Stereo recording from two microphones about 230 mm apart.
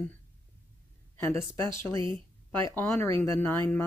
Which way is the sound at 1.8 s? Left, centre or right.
Centre.